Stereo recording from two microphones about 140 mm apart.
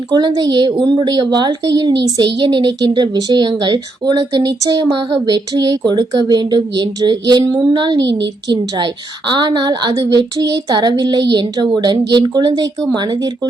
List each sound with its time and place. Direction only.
0.1 s speech: 30° right (ahead or behind)